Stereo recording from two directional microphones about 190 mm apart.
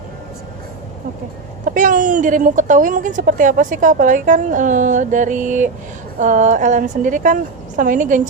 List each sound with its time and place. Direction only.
1.6 s a woman's voice: 45° right (ahead or behind)